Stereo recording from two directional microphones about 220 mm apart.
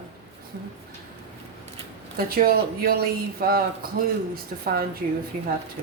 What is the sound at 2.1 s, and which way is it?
A woman's voice, 45° right (ahead or behind).